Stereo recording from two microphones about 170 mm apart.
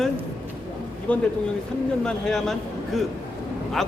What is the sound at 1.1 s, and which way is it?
Speech, 10° left (ahead or behind).